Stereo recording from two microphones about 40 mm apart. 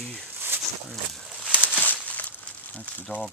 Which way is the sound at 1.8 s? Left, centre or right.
Left.